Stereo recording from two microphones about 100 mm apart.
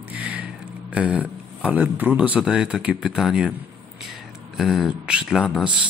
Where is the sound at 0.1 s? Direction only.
15° right (ahead or behind).